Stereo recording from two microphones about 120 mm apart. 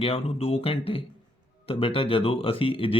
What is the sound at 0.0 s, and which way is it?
Speech, 55° left (ahead or behind).